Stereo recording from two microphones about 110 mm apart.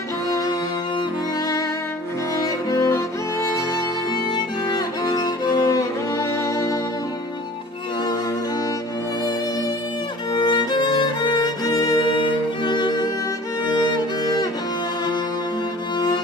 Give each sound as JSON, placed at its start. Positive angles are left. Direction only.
{"t": 0.3, "sound": "music", "side_deg": 35}
{"t": 2.4, "sound": "music", "side_deg": 30}
{"t": 4.1, "sound": "music", "side_deg": 40}
{"t": 10.3, "sound": "music", "side_deg": 40}